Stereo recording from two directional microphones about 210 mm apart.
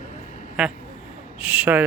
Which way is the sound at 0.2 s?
35° left (ahead or behind).